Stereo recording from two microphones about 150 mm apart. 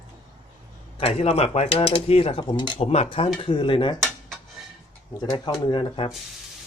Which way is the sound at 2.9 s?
45° left (ahead or behind).